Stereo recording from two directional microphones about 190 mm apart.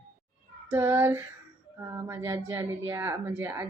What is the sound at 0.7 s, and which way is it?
Speech, 10° right (ahead or behind).